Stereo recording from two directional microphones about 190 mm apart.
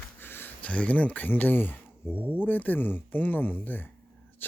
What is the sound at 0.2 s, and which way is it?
Speech, 10° left (ahead or behind).